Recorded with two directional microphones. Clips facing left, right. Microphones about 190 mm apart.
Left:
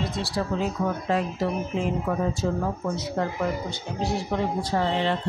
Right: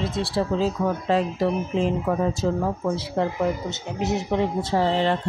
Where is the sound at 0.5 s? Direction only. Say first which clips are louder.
Right 2 dB; 30° right (ahead or behind).